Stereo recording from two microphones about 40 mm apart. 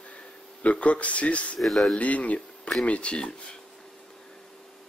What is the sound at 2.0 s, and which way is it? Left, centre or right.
Speech, left.